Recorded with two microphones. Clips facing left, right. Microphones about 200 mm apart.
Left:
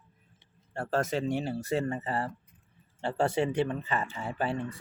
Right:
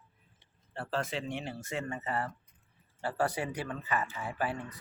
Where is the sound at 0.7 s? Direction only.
45° left (ahead or behind).